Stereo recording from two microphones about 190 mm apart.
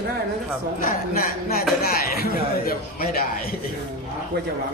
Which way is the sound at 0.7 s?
45° left (ahead or behind).